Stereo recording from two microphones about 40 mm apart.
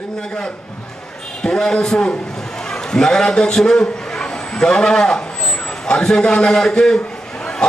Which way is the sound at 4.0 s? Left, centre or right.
Centre.